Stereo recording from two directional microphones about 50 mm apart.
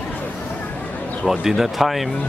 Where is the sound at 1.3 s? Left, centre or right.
Centre.